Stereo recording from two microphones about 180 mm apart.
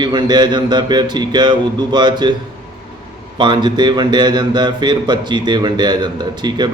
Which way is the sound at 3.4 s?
25° right (ahead or behind).